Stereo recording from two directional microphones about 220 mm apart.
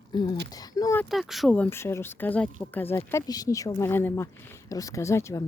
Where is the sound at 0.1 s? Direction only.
20° left (ahead or behind).